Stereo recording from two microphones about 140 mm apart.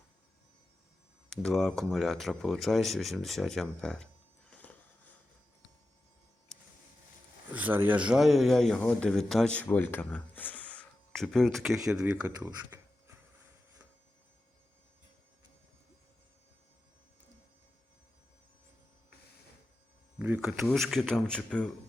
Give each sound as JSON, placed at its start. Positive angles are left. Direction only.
{"t": 1.3, "sound": "speech", "side_deg": 5}
{"t": 4.5, "sound": "a sound", "side_deg": 10}
{"t": 7.5, "sound": "speech", "side_deg": -15}
{"t": 20.1, "sound": "speech", "side_deg": -10}